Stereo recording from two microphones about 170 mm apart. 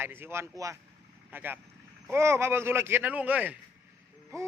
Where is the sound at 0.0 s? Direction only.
15° right (ahead or behind).